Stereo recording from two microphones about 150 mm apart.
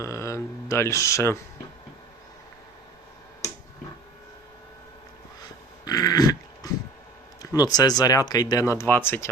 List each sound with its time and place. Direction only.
0.0 s speech: 20° left (ahead or behind)
5.8 s dog: 25° left (ahead or behind)
7.5 s speech: 25° left (ahead or behind)